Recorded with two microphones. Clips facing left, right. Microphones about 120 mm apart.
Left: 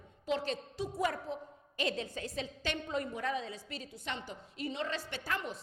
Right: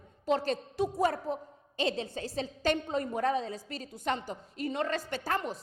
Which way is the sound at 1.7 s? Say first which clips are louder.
Right 4 dB; 30° right (ahead or behind).